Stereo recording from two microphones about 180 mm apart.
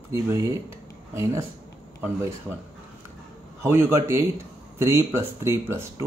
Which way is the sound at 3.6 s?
15° right (ahead or behind).